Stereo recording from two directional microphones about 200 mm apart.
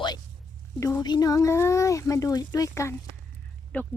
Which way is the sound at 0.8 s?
15° left (ahead or behind).